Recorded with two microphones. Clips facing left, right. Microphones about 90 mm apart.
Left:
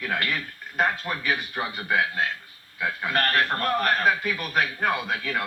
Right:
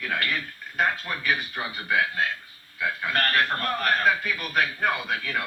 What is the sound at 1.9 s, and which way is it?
A man's voice, 20° left (ahead or behind).